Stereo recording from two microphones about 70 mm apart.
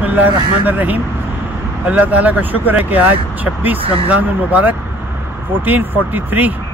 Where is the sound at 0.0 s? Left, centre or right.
Right.